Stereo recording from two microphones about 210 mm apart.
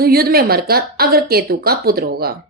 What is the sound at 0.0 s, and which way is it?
A woman's voice, 45° right (ahead or behind).